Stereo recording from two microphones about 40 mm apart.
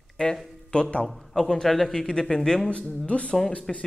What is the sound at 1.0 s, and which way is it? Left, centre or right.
A man's voice, centre.